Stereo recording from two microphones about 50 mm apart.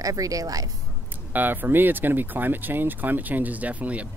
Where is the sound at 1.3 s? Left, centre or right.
Right.